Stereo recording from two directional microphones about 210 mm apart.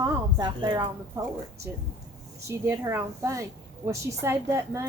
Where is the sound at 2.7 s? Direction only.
15° right (ahead or behind).